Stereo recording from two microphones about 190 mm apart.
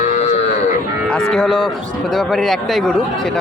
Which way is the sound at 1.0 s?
5° left (ahead or behind).